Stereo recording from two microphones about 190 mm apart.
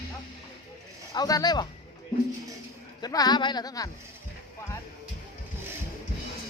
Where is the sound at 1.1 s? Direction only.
20° left (ahead or behind).